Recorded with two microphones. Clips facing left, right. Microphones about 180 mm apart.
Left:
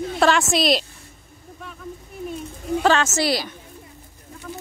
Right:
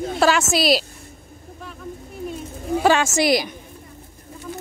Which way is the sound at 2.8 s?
10° right (ahead or behind).